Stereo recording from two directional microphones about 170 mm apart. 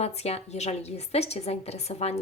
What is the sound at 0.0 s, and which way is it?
Speech, 40° left (ahead or behind).